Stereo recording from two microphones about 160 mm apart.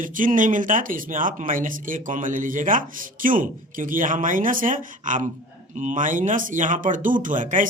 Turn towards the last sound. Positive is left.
turn(degrees=-55)  # may be behind; listen again after turning